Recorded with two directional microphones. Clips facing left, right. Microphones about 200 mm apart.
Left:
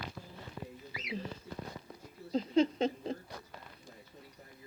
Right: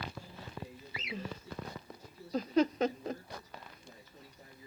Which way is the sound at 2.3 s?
25° left (ahead or behind).